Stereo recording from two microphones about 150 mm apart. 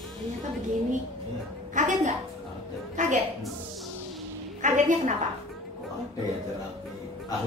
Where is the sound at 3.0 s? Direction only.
55° right (ahead or behind).